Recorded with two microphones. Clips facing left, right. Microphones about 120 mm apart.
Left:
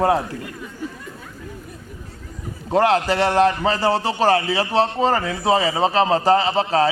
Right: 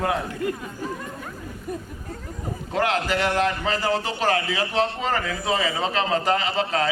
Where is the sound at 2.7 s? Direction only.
35° left (ahead or behind).